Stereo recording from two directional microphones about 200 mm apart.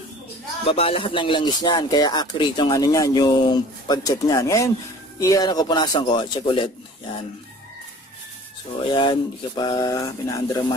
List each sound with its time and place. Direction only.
0.7 s speech: 25° left (ahead or behind)
8.8 s speech: 25° left (ahead or behind)